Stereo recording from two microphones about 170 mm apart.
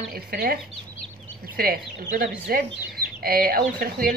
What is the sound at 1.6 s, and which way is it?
Speech, 60° right (ahead or behind).